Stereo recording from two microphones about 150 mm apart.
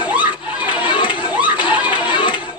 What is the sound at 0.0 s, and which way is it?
Chatter, 10° right (ahead or behind).